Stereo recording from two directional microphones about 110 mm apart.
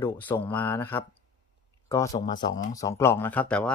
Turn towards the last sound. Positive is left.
turn(degrees=10)  # may be behind; listen again after turning